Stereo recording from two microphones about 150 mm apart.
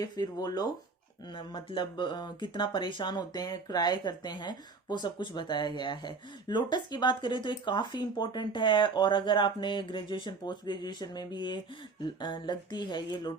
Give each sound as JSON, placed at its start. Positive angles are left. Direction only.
{"t": 0.0, "sound": "speech", "side_deg": 25}